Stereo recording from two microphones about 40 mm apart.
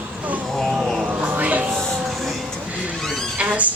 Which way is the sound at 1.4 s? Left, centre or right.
Right.